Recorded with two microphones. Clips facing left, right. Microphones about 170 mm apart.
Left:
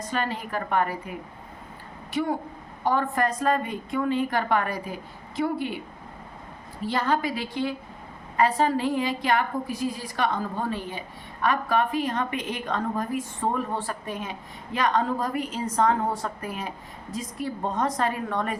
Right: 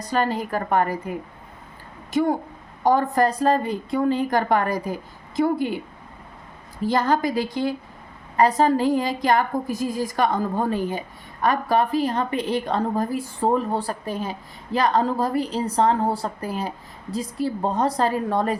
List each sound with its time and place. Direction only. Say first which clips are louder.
0.0 s a woman's voice: right 6 dB; 35° right (ahead or behind)
2.8 s a woman's voice: right 5 dB; 40° right (ahead or behind)
6.8 s a woman's voice: right 5 dB; 40° right (ahead or behind)